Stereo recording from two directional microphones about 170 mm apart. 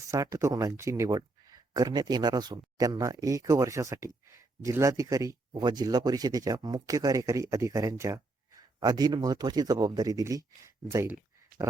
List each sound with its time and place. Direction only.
0.1 s speech: 20° right (ahead or behind)